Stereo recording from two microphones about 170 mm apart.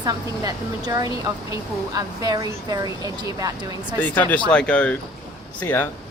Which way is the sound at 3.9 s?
10° left (ahead or behind).